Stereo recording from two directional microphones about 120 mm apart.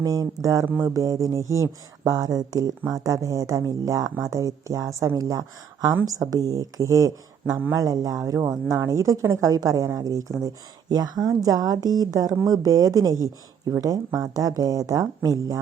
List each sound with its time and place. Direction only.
0.0 s a woman's voice: 30° right (ahead or behind)